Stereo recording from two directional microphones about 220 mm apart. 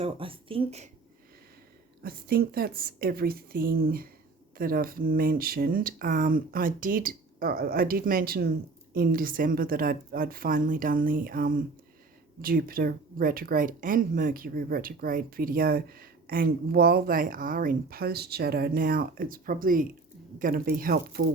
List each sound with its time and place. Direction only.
0.0 s speech: 25° right (ahead or behind)
2.0 s speech: 45° right (ahead or behind)